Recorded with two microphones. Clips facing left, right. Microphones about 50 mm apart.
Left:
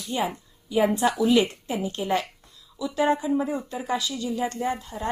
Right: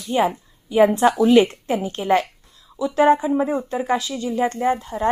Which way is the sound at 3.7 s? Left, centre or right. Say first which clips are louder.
Right 6 dB; right.